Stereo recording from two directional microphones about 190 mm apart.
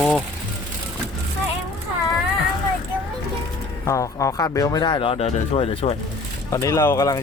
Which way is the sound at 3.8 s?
15° left (ahead or behind).